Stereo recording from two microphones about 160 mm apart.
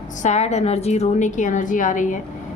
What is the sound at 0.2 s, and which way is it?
A woman's voice, 45° left (ahead or behind).